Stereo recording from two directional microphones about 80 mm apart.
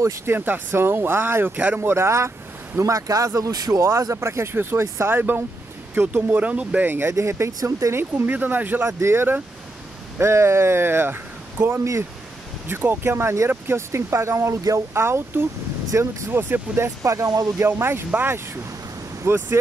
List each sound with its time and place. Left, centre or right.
0.0 s speech: right
1.8 s speech: right; by 6.9 s centre
6.9 s speech: right
8.0 s speech: right
8.8 s speech: right
17.6 s speech: right